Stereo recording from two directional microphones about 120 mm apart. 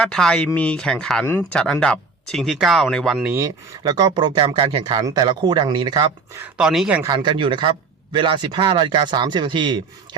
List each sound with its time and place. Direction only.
0.0 s speech: 5° left (ahead or behind)
3.4 s speech: 35° right (ahead or behind)
4.4 s speech: 50° right (ahead or behind)
6.6 s a man's voice: 5° right (ahead or behind)
7.0 s speech: 35° right (ahead or behind)